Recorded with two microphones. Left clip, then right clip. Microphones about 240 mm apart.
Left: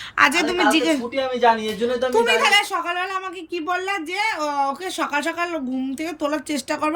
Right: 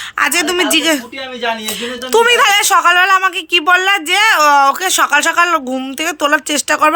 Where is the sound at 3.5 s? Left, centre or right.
Right.